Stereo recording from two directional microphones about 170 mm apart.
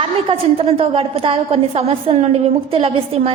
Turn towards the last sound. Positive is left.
turn(degrees=-35)  # may be behind; listen again after turning